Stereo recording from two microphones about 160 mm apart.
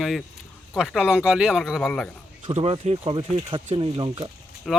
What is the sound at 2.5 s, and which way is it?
Speech, 40° right (ahead or behind).